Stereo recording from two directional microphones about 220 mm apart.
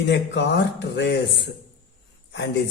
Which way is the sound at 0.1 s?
50° left (ahead or behind).